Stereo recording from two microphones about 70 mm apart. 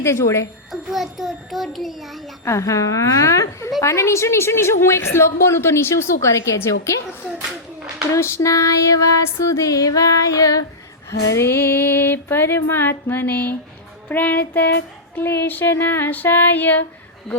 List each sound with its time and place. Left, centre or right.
0.0 s female singing: left
0.7 s a child's voice: centre
2.4 s female singing: left
3.8 s a woman's voice: left
8.1 s female singing: left
11.3 s a woman's voice: left
14.1 s child singing: left